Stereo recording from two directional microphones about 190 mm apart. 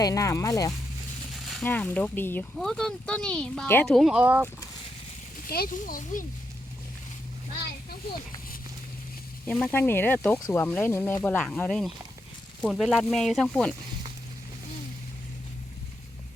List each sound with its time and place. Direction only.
0.0 s speech: 15° left (ahead or behind)
1.3 s speech: centre (ahead or behind)
5.5 s speech: 50° left (ahead or behind)
9.5 s speech: 5° left (ahead or behind)